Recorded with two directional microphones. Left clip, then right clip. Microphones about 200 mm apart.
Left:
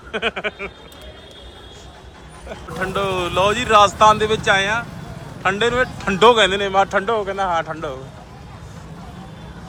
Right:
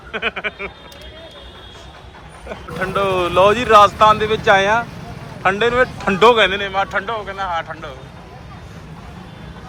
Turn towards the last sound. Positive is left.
turn(degrees=30)  # may be behind; listen again after turning